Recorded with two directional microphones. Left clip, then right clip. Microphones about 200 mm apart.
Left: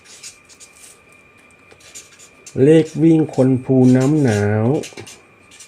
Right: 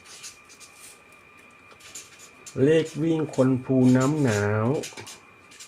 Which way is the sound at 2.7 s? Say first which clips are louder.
Left 10 dB; centre (ahead or behind).